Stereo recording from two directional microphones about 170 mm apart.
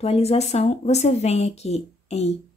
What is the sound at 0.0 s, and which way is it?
Speech, 35° left (ahead or behind).